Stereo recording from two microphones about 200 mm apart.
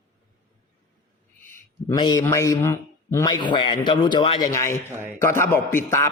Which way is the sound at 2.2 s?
15° left (ahead or behind).